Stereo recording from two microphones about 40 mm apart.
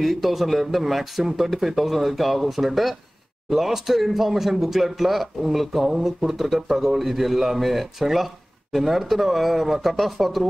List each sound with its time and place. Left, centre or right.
0.0 s a man's voice: centre